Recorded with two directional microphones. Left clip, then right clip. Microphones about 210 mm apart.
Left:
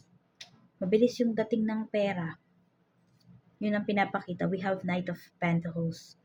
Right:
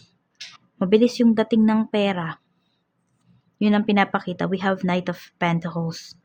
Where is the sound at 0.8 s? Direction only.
40° right (ahead or behind).